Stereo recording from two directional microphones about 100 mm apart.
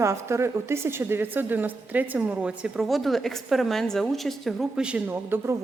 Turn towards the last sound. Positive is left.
turn(degrees=-20)  # may be behind; listen again after turning